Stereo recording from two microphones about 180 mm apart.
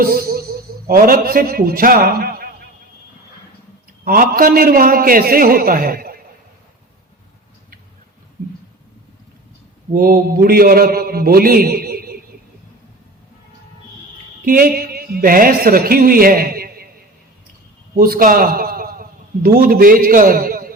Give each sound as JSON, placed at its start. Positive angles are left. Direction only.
{"t": 0.0, "sound": "a man's voice", "side_deg": -55}
{"t": 4.0, "sound": "a man's voice", "side_deg": -50}
{"t": 9.9, "sound": "a man's voice", "side_deg": -55}
{"t": 14.4, "sound": "a man's voice", "side_deg": -55}
{"t": 17.9, "sound": "a man's voice", "side_deg": -55}